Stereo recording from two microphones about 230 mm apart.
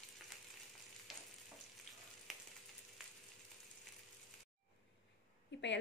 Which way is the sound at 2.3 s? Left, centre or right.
Centre.